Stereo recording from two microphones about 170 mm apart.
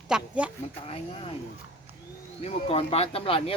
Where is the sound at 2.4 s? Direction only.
35° left (ahead or behind).